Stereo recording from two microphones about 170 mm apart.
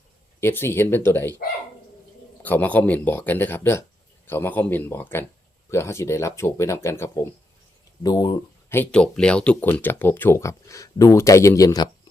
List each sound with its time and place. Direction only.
0.3 s speech: 15° left (ahead or behind)
2.4 s speech: 10° left (ahead or behind)
8.7 s speech: 10° left (ahead or behind)